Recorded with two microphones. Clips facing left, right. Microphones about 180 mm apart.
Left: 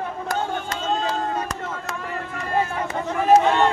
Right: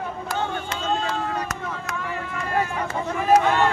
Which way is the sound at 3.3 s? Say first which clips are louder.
Left 2 dB; 25° left (ahead or behind).